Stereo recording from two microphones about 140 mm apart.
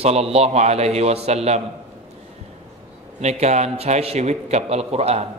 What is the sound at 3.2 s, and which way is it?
Speech, 55° right (ahead or behind).